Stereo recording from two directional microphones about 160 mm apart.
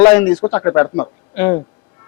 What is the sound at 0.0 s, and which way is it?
A woman's voice, 10° left (ahead or behind).